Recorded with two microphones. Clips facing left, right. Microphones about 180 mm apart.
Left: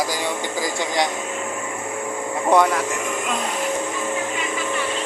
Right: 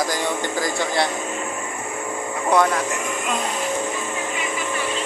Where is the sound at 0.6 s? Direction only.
15° left (ahead or behind).